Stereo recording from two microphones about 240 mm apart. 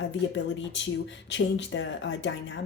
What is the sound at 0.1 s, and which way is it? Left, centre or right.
Speech, left.